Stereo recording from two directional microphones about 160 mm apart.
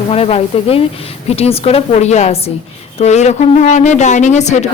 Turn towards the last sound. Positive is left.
turn(degrees=45)  # may be behind; listen again after turning